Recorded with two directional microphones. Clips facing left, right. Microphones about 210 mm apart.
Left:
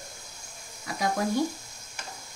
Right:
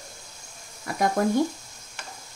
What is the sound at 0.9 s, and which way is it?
Speech, 55° right (ahead or behind).